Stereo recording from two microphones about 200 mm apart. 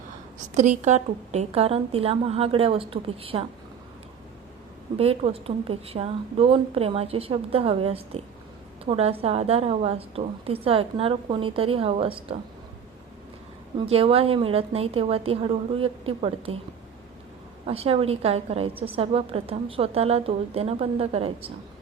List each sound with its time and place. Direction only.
0.3 s a woman's voice: 35° right (ahead or behind)
4.9 s a woman's voice: 30° right (ahead or behind)
13.7 s a woman's voice: 30° right (ahead or behind)
17.7 s a woman's voice: 30° right (ahead or behind)